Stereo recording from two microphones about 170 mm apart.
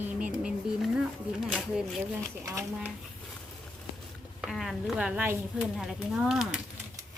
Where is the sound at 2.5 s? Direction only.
15° right (ahead or behind).